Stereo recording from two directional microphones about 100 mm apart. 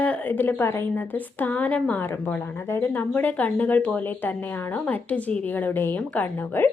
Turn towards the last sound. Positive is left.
turn(degrees=20)  # may be behind; listen again after turning